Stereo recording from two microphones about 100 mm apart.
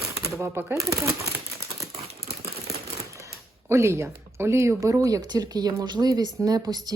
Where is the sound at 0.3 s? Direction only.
30° right (ahead or behind).